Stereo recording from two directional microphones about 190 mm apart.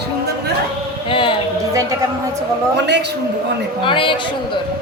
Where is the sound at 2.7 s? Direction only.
65° right (ahead or behind).